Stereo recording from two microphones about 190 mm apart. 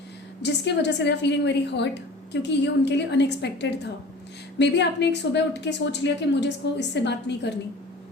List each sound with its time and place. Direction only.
0.4 s a woman's voice: 65° left (ahead or behind)